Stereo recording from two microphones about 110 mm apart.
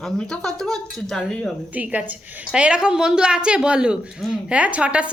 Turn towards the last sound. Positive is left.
turn(degrees=-10)  # may be behind; listen again after turning